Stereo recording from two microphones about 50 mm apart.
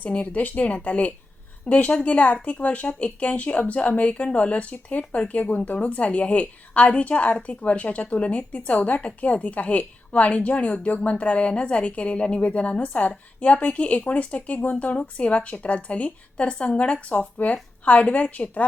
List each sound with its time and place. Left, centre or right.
0.0 s a woman's voice: left